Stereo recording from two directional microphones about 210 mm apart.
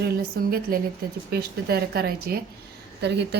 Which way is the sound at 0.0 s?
45° right (ahead or behind).